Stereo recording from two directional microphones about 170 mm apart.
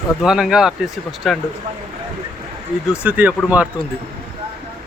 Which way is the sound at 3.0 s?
5° right (ahead or behind).